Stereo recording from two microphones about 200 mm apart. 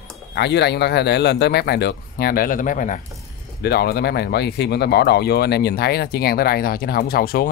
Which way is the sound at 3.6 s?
50° left (ahead or behind).